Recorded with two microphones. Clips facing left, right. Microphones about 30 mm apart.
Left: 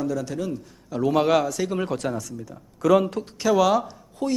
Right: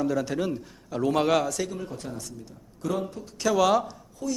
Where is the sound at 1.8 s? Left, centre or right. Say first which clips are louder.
Left 9 dB; left.